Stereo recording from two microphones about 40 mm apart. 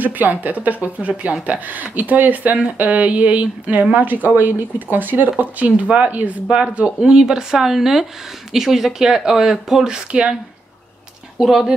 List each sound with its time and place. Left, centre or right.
0.0 s speech: right
3.9 s speech: right
5.9 s speech: right
6.5 s speech: right
7.0 s speech: centre
9.9 s speech: right
11.3 s speech: centre